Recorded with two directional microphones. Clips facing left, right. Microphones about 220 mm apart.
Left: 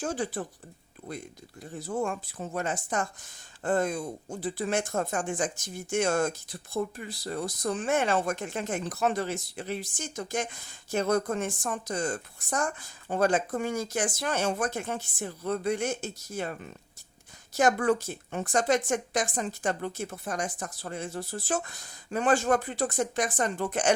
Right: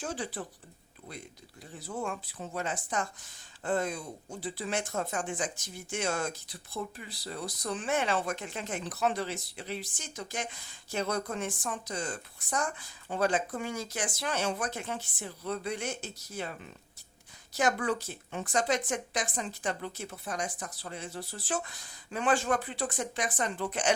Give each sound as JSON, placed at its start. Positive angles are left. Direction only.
{"t": 0.0, "sound": "speech", "side_deg": 45}
{"t": 1.9, "sound": "speech", "side_deg": 45}